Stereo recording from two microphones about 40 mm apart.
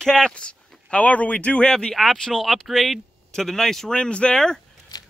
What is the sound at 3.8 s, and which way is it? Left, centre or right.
Speech, left.